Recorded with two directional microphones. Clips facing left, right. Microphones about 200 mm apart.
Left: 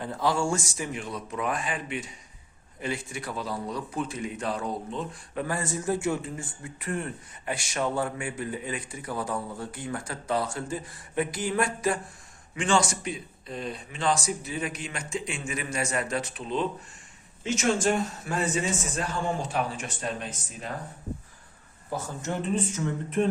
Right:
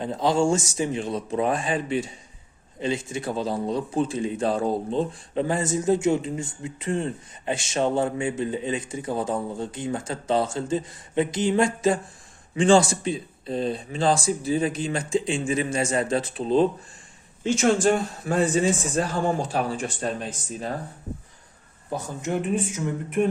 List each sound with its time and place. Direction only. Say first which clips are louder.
0.0 s speech: right 5 dB; 20° right (ahead or behind)
21.8 s speech: right 3 dB; 15° right (ahead or behind)